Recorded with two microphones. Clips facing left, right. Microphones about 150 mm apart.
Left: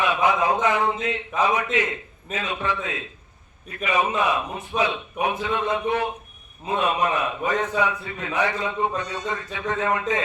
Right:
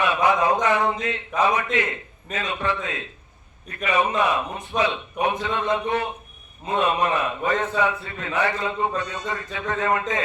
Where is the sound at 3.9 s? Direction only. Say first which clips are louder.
Right 1 dB; 10° left (ahead or behind).